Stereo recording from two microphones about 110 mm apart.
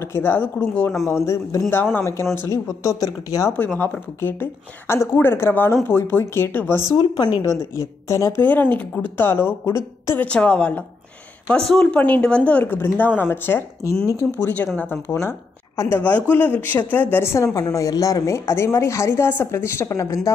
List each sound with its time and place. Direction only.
0.1 s a woman's voice: 20° left (ahead or behind)
3.5 s a woman's voice: 20° left (ahead or behind)
6.9 s speech: 40° left (ahead or behind)
7.4 s a woman's voice: 30° left (ahead or behind)
10.2 s a woman's voice: 10° left (ahead or behind); by 20.2 s 25° left (ahead or behind)